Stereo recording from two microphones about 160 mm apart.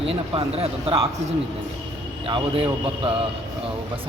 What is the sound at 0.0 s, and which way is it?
Speech, 40° right (ahead or behind).